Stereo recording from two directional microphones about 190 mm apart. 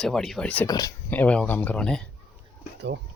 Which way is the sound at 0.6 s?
20° left (ahead or behind).